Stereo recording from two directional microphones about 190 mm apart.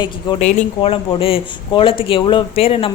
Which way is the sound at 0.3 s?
35° left (ahead or behind).